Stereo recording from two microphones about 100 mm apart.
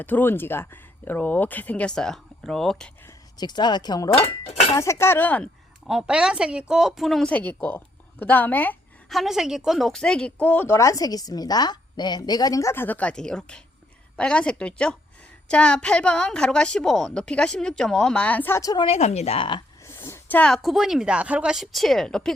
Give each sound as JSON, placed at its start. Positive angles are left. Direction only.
{"t": 0.0, "sound": "a woman's voice", "side_deg": 20}
{"t": 3.3, "sound": "speech", "side_deg": 45}
{"t": 4.7, "sound": "a woman's voice", "side_deg": 30}
{"t": 5.9, "sound": "a woman's voice", "side_deg": -5}
{"t": 7.3, "sound": "a woman's voice", "side_deg": 15}
{"t": 9.0, "sound": "a woman's voice", "side_deg": 0}
{"t": 18.8, "sound": "speech", "side_deg": 80}
{"t": 19.8, "sound": "a sound", "side_deg": 25}
{"t": 20.5, "sound": "speech", "side_deg": 0}